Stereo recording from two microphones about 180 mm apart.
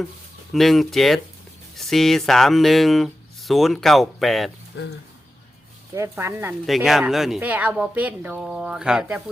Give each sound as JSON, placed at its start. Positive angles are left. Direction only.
{"t": 0.5, "sound": "speech", "side_deg": 0}
{"t": 4.7, "sound": "speech", "side_deg": 75}
{"t": 5.9, "sound": "speech", "side_deg": -15}
{"t": 6.7, "sound": "speech", "side_deg": 0}